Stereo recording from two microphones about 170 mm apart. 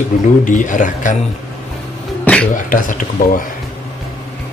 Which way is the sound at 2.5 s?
50° left (ahead or behind).